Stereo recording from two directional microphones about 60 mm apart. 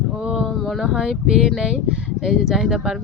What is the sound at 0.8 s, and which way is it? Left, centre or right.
Speech, centre.